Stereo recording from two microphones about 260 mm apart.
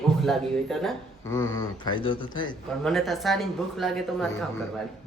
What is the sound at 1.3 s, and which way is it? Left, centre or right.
Speech, centre.